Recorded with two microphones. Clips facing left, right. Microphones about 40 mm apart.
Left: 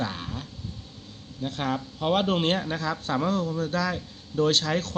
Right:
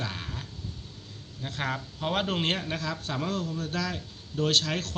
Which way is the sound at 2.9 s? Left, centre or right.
Left.